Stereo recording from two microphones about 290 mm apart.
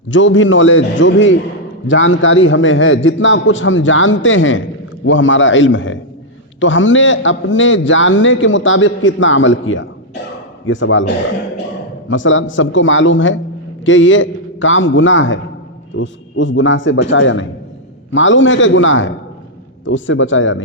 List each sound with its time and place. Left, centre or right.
0.1 s a man's voice: left